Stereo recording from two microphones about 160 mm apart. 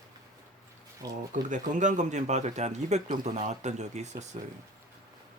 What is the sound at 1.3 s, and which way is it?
Speech, 50° right (ahead or behind).